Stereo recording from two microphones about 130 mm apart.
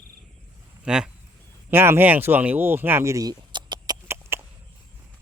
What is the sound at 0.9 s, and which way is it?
Speech, 5° right (ahead or behind).